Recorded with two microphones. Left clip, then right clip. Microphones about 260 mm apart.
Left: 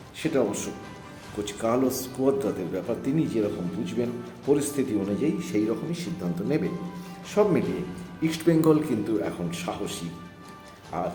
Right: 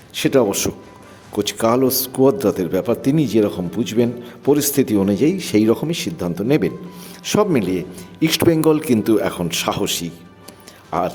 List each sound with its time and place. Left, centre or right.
0.1 s a man's voice: right